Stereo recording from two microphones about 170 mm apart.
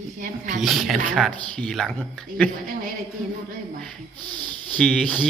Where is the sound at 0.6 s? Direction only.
Centre (ahead or behind).